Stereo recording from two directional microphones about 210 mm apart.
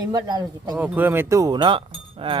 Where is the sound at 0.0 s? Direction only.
20° right (ahead or behind).